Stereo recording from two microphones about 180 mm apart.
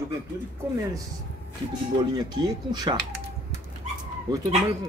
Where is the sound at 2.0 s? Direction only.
20° right (ahead or behind).